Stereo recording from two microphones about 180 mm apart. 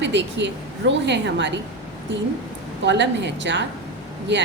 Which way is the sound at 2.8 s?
75° right (ahead or behind).